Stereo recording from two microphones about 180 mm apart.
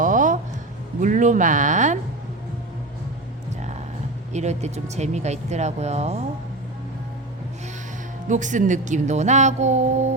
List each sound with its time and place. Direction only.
0.0 s a sound: 45° right (ahead or behind)
1.0 s speech: 45° right (ahead or behind)
4.3 s speech: 40° right (ahead or behind)
8.3 s speech: 45° right (ahead or behind)